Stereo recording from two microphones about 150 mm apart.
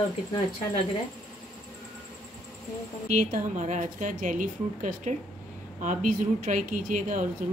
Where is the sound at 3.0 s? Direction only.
55° right (ahead or behind).